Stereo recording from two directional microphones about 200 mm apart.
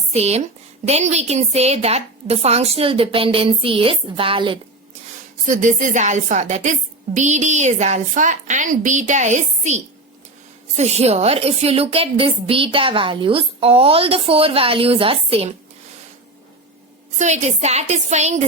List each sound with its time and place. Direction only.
0.1 s a woman's voice: 30° right (ahead or behind)
5.5 s a woman's voice: 40° right (ahead or behind)
17.2 s a woman's voice: 35° right (ahead or behind)